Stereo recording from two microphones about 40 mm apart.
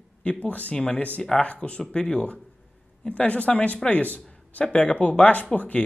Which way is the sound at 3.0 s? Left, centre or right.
Left.